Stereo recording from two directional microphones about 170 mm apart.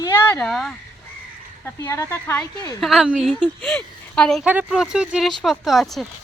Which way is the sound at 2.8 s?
Centre (ahead or behind).